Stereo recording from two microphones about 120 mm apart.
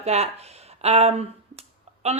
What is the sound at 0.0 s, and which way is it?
A woman's voice, 60° right (ahead or behind).